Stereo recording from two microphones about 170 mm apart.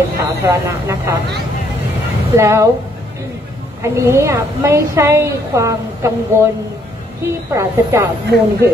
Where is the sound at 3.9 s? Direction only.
15° right (ahead or behind).